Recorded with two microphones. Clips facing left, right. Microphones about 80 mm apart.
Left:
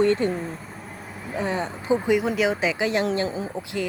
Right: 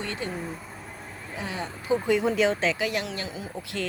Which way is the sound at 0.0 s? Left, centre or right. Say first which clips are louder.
Left 13 dB; left.